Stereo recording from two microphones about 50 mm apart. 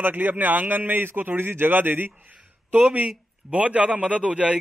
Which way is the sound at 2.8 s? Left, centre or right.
Right.